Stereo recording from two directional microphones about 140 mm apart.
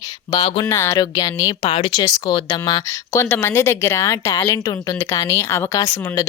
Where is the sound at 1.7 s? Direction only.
40° left (ahead or behind).